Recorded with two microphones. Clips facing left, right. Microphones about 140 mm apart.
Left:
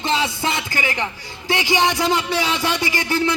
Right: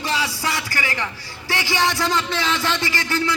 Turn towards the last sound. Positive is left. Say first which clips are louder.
# left 2 dB
turn(degrees=20)  # may be behind; listen again after turning